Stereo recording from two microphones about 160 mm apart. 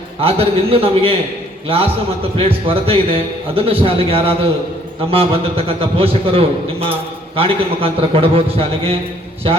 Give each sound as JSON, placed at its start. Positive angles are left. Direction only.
{"t": 0.2, "sound": "a man's voice", "side_deg": -35}